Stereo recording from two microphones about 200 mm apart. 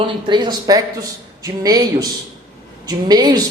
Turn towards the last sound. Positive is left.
turn(degrees=-20)  # may be behind; listen again after turning